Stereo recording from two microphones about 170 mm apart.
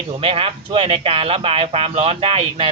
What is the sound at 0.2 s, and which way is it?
Speech, 35° right (ahead or behind).